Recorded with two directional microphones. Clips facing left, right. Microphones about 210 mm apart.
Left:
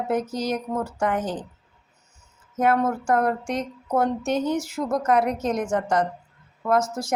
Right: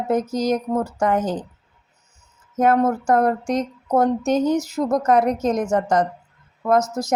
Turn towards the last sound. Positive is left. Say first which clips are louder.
# right 3 dB
turn(degrees=-40)  # may be behind; listen again after turning